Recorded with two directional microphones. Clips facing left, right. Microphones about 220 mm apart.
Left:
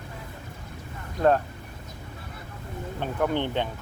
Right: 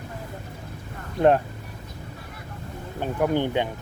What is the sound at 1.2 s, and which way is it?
Speech, 30° right (ahead or behind).